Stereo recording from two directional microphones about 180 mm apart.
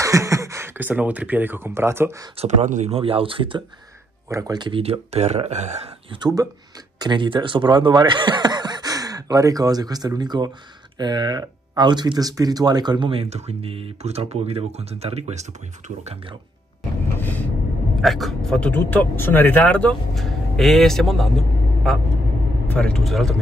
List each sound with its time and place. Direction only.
0.0 s speech: 15° right (ahead or behind)
2.3 s speech: 40° right (ahead or behind)
17.2 s vehicle: 10° left (ahead or behind)
18.0 s speech: centre (ahead or behind)